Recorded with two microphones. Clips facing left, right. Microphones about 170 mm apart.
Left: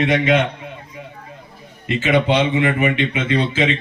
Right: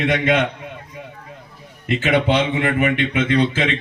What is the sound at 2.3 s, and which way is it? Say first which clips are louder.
Speech: left 2 dB; 55° right (ahead or behind).